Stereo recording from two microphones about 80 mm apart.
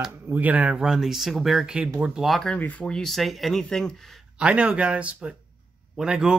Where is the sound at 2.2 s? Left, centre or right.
Centre.